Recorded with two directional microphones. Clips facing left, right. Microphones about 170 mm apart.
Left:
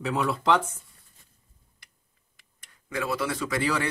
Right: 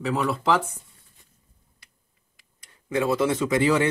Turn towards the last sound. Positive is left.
turn(degrees=-20)  # may be behind; listen again after turning